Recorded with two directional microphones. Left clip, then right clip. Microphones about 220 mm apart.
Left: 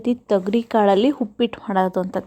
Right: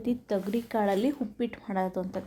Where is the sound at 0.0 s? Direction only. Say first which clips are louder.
Left 10 dB; 25° left (ahead or behind).